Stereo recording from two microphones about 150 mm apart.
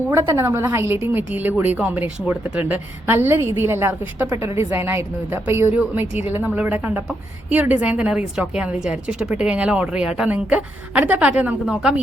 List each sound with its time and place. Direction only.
0.1 s a woman's voice: 15° right (ahead or behind)